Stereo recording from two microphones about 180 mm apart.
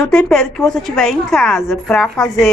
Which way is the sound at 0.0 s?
5° left (ahead or behind).